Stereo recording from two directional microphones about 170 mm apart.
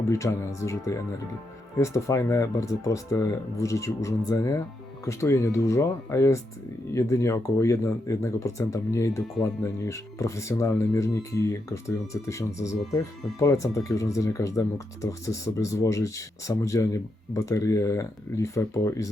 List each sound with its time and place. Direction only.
0.1 s speech: 20° left (ahead or behind)